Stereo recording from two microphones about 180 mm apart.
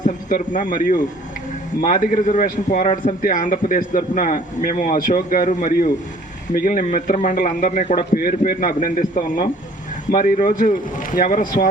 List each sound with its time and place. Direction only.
0.0 s a man's voice: 45° left (ahead or behind)